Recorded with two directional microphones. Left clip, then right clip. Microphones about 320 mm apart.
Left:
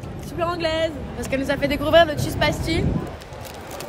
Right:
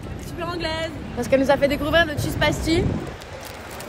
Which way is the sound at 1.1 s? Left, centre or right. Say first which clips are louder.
Right 8 dB; centre.